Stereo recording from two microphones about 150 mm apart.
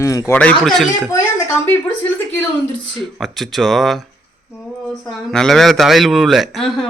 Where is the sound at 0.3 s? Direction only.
5° left (ahead or behind).